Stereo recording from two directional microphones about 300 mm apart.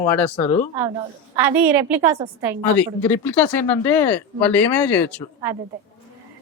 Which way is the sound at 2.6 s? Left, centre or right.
Centre.